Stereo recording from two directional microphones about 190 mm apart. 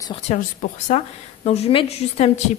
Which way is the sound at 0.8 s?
35° left (ahead or behind).